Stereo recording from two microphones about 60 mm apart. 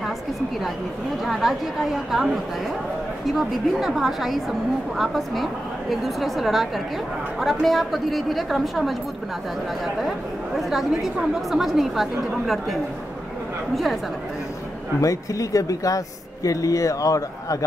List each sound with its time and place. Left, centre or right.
1.2 s a woman's voice: centre
9.9 s a woman's voice: centre
15.0 s speech: left